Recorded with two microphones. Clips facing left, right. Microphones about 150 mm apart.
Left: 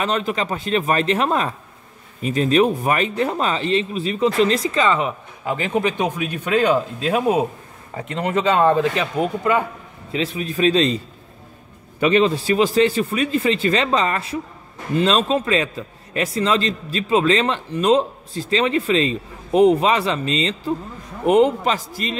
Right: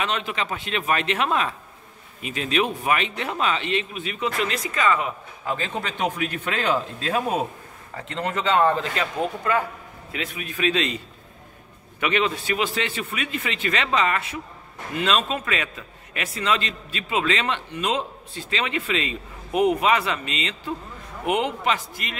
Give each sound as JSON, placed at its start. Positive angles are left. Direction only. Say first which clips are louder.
{"t": 0.0, "sound": "a man's voice", "louder": "left 5 dB", "side_deg": 40}
{"t": 10.1, "sound": "a man's voice", "louder": "left 8 dB", "side_deg": 30}
{"t": 12.0, "sound": "a man's voice", "louder": "left 7 dB", "side_deg": 35}